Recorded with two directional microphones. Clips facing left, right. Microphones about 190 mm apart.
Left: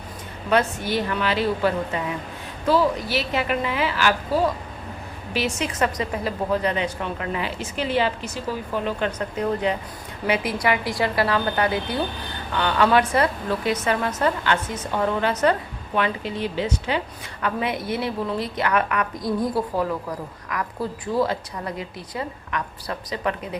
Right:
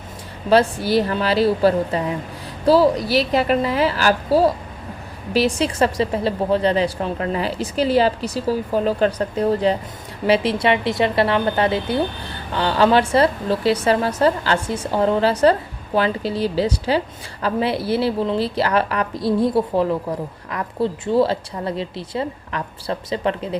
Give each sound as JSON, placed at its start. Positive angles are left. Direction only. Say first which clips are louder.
{"t": 0.5, "sound": "a woman's voice", "louder": "right 6 dB", "side_deg": -35}